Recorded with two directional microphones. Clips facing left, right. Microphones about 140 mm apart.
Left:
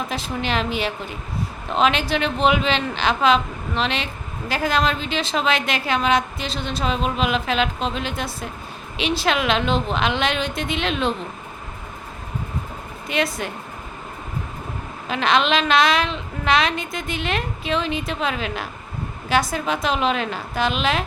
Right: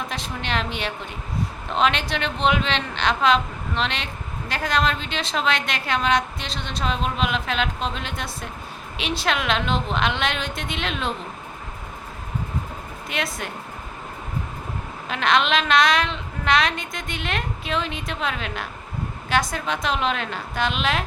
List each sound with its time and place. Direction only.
0.1 s a woman's voice: 5° left (ahead or behind)
13.1 s a woman's voice: centre (ahead or behind)
15.1 s a woman's voice: centre (ahead or behind)